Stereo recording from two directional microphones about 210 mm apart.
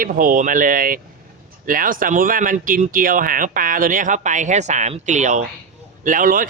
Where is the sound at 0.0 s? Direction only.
40° right (ahead or behind).